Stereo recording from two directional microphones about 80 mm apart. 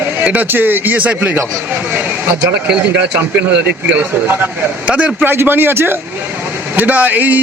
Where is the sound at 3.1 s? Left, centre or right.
Right.